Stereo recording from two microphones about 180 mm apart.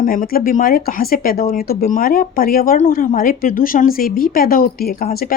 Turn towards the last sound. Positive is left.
turn(degrees=55)  # may be behind; listen again after turning